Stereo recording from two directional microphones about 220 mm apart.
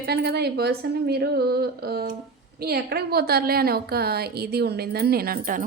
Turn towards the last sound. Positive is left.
turn(degrees=-40)  # may be behind; listen again after turning